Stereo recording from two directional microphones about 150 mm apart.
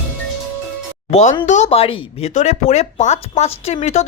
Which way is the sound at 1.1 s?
50° left (ahead or behind).